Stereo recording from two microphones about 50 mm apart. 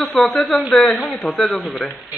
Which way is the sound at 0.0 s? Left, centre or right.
Centre.